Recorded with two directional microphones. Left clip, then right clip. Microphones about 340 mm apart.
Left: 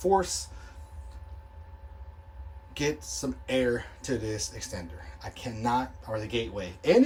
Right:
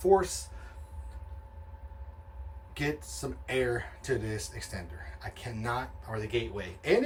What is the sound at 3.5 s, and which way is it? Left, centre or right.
Speech, centre.